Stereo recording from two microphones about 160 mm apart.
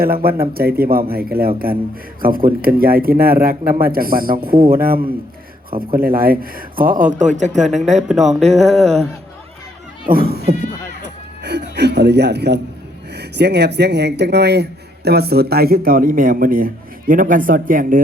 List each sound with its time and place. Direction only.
0.0 s a man's voice: 70° right (ahead or behind); by 9.0 s 40° right (ahead or behind)
10.1 s speech: 70° right (ahead or behind)